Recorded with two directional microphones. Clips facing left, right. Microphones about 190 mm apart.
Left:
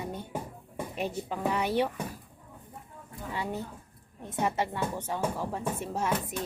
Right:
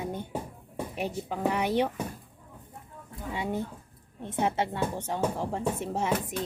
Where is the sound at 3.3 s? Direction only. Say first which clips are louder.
Right 3 dB; 15° right (ahead or behind).